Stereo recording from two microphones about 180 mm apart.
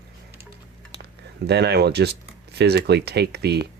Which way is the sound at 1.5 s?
65° right (ahead or behind).